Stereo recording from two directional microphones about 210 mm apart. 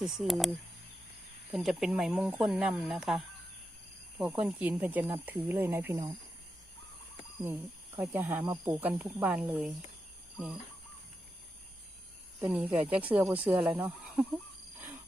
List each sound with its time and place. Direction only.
0.0 s speech: centre (ahead or behind)
7.4 s speech: 10° right (ahead or behind)
12.4 s speech: 10° right (ahead or behind)